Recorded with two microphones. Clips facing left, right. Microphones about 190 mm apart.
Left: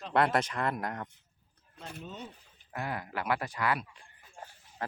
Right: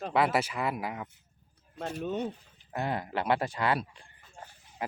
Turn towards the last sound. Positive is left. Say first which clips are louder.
# right 2 dB
turn(degrees=-10)  # may be behind; listen again after turning